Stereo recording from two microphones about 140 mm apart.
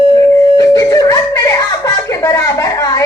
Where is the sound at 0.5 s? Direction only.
25° left (ahead or behind).